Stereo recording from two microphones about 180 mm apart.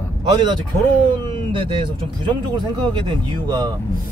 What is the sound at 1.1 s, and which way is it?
Speech, 25° right (ahead or behind).